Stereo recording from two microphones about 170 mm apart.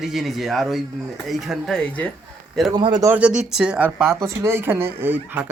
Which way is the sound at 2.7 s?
25° right (ahead or behind).